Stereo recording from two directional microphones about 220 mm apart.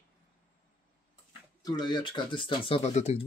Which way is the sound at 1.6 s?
20° left (ahead or behind).